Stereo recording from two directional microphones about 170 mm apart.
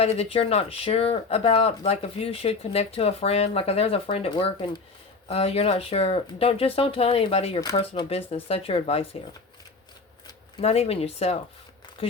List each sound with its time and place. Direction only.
0.0 s speech: 35° left (ahead or behind)
10.6 s speech: 40° left (ahead or behind)
12.0 s a sound: 35° left (ahead or behind)